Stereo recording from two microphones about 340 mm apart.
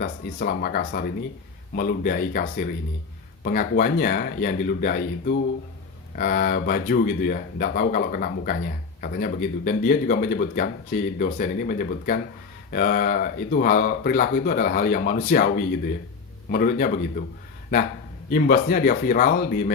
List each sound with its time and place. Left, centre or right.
0.0 s speech: left
16.5 s speech: left
18.3 s speech: left